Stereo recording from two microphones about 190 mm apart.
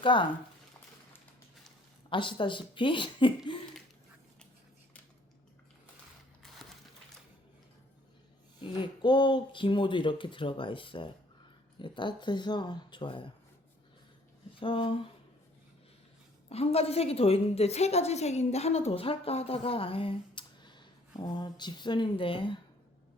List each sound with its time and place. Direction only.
0.0 s speech: 25° left (ahead or behind)
2.0 s speech: 25° left (ahead or behind)
8.6 s speech: 25° left (ahead or behind)
14.6 s speech: 30° left (ahead or behind)
16.5 s a woman's voice: 30° left (ahead or behind)